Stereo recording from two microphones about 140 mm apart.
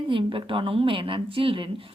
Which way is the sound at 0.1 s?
35° right (ahead or behind).